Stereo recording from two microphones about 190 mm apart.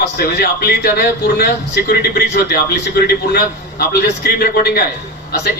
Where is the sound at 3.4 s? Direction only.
55° left (ahead or behind).